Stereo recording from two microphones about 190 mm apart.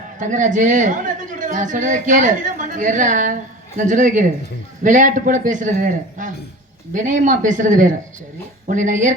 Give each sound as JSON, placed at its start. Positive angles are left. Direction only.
{"t": 0.2, "sound": "a man's voice", "side_deg": -40}